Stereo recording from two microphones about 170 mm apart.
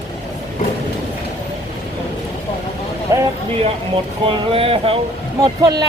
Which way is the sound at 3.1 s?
20° right (ahead or behind).